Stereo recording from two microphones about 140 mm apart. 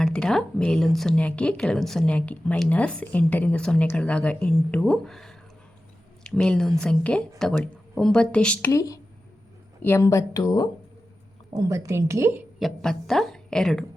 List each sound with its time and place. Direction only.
0.0 s a woman's voice: 5° left (ahead or behind)
8.7 s speech: 25° left (ahead or behind)
11.5 s a woman's voice: 25° right (ahead or behind)
12.5 s a woman's voice: centre (ahead or behind)